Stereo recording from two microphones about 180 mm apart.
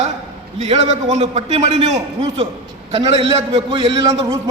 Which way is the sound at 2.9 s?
30° right (ahead or behind).